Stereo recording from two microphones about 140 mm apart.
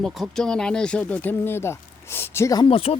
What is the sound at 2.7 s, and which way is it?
Speech, 40° left (ahead or behind).